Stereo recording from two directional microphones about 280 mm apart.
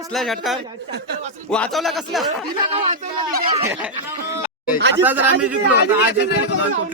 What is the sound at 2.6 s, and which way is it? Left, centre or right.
Speech, centre.